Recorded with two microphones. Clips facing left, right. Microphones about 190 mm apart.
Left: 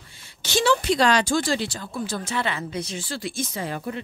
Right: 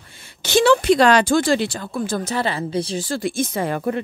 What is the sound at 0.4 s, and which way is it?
Speech, 60° right (ahead or behind).